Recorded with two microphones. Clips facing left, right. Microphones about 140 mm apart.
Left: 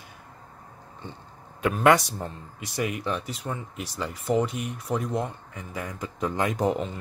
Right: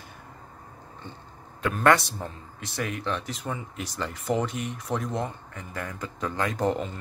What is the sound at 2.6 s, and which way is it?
Speech, 10° left (ahead or behind).